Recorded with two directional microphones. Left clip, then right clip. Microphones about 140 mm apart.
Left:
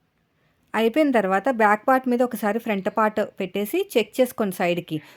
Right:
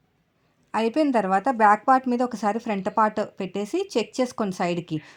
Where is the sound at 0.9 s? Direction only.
30° left (ahead or behind).